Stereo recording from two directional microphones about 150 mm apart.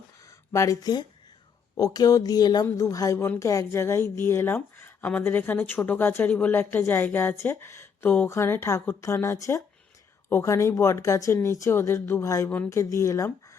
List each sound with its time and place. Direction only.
0.5 s a woman's voice: 20° left (ahead or behind)